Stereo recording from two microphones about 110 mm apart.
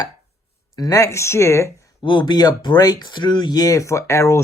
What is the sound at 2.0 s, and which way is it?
Speech, 40° left (ahead or behind).